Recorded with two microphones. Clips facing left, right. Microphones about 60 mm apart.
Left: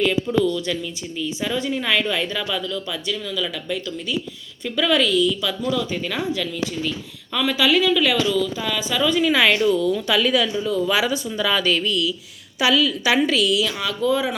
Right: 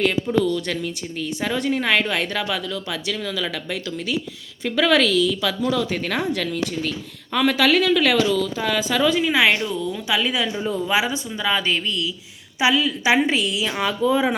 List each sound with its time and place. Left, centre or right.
0.3 s a woman's voice: right
4.6 s a woman's voice: right
5.6 s a woman's voice: right
9.1 s a woman's voice: centre
10.5 s a woman's voice: right